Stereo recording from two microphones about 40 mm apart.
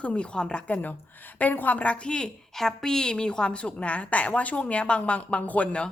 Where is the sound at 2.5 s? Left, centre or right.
Centre; by 5.8 s left.